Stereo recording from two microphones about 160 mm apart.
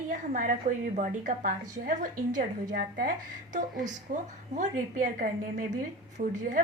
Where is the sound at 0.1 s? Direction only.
55° right (ahead or behind).